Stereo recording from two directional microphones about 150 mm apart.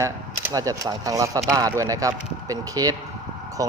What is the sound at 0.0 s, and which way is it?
Speech, 20° right (ahead or behind).